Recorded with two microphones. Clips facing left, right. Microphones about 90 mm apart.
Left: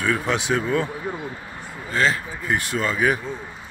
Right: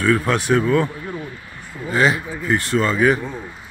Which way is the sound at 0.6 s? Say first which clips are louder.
Right 4 dB; 15° left (ahead or behind).